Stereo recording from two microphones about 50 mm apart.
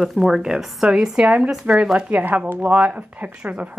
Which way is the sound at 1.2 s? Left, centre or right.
Right.